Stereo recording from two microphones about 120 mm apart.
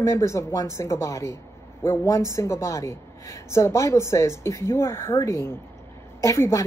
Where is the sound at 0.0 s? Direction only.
25° left (ahead or behind).